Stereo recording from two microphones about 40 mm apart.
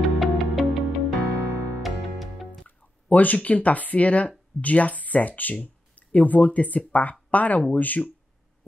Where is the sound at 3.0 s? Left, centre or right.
Left.